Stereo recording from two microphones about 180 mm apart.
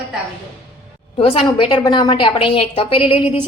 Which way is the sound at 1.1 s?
30° left (ahead or behind).